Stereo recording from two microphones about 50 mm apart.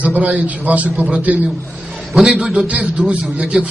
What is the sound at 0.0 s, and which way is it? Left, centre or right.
A man's voice, right.